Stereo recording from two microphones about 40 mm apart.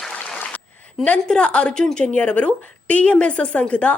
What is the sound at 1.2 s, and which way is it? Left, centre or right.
Speech, left.